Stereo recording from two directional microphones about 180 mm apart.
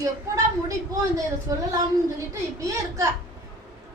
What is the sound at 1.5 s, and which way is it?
A woman's voice, 20° right (ahead or behind).